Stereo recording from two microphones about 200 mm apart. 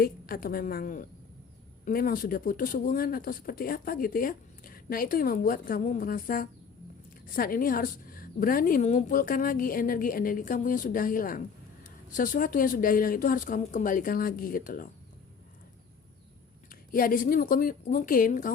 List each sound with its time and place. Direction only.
0.0 s a woman's voice: 45° left (ahead or behind)
16.9 s a woman's voice: 45° left (ahead or behind)